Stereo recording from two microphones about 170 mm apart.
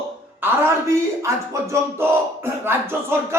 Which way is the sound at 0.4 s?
10° right (ahead or behind).